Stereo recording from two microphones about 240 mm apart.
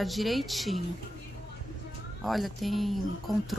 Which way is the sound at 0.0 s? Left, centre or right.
Centre.